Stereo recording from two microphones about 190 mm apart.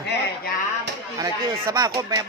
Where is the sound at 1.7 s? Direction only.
20° right (ahead or behind).